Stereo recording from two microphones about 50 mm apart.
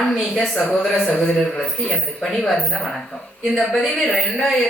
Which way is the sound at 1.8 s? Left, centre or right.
Left.